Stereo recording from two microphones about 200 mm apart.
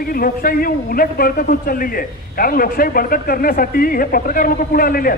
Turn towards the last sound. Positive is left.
turn(degrees=45)  # may be behind; listen again after turning